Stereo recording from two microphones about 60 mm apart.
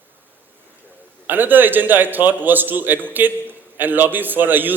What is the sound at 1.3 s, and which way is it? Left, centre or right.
A man's voice, right.